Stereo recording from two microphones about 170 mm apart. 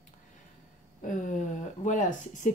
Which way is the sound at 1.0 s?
50° left (ahead or behind).